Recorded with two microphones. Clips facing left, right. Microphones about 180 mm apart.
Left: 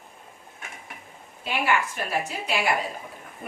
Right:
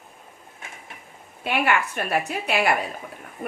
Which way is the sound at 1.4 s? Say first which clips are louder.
Right 2 dB; 60° right (ahead or behind).